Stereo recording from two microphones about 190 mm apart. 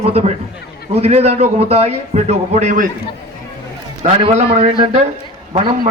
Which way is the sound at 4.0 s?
35° right (ahead or behind).